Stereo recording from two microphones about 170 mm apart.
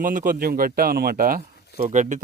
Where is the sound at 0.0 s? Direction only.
50° right (ahead or behind).